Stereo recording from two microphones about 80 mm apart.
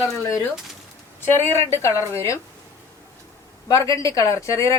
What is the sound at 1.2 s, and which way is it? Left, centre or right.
A woman's voice, left.